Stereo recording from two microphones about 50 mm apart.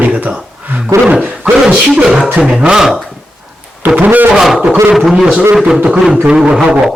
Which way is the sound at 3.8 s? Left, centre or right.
Right.